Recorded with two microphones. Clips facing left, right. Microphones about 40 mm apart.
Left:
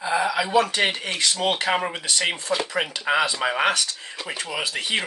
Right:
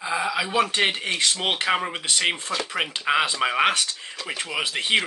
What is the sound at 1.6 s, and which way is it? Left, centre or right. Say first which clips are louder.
Speech: even; centre.